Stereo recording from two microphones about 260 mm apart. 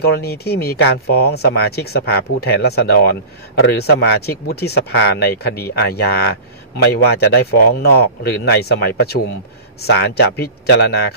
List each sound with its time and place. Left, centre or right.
0.0 s speech: left